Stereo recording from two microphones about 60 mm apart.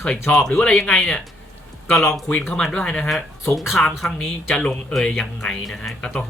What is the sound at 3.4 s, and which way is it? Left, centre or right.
Speech, centre.